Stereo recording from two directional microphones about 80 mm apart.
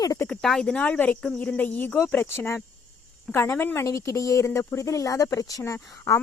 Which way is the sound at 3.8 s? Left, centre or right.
Left.